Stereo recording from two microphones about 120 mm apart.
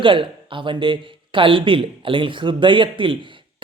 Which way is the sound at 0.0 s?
45° right (ahead or behind).